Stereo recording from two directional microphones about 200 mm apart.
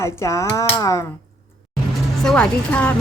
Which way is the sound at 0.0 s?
15° left (ahead or behind).